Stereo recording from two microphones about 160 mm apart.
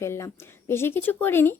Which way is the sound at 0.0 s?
15° left (ahead or behind).